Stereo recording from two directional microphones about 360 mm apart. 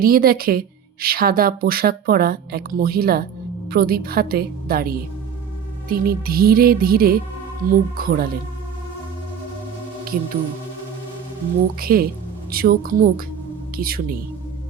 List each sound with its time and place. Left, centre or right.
0.0 s speech: right
11.8 s speech: right